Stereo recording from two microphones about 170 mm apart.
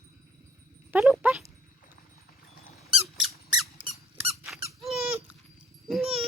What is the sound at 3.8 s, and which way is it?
Squeak, 35° right (ahead or behind).